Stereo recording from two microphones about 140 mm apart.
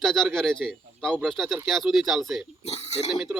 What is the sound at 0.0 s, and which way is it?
Speech, centre (ahead or behind).